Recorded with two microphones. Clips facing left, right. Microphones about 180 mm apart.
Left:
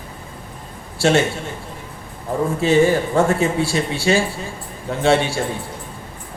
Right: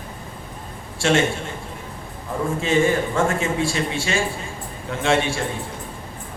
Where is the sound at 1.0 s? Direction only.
35° left (ahead or behind).